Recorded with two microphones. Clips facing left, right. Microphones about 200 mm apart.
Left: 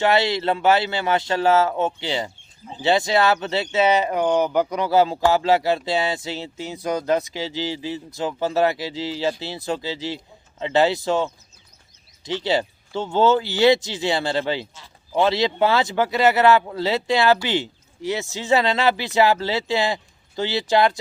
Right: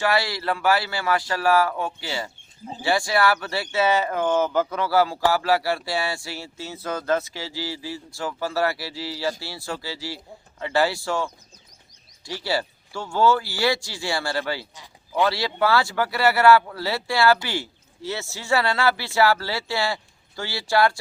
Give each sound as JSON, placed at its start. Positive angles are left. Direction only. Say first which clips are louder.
{"t": 0.0, "sound": "speech", "louder": "left 4 dB", "side_deg": 20}